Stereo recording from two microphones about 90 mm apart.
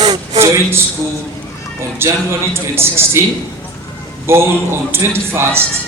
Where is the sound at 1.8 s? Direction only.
30° right (ahead or behind).